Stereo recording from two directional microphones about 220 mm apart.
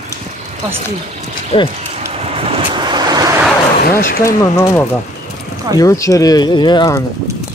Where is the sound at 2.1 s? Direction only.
25° right (ahead or behind).